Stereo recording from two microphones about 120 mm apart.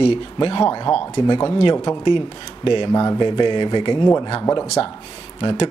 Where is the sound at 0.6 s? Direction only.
30° left (ahead or behind).